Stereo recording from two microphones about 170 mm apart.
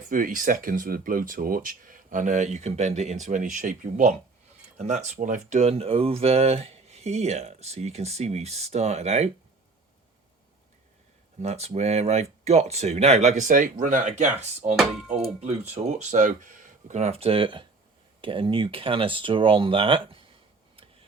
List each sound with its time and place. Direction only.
0.1 s speech: 55° right (ahead or behind)
11.3 s speech: 40° right (ahead or behind)
14.8 s speech: 5° right (ahead or behind)
15.4 s speech: 40° right (ahead or behind)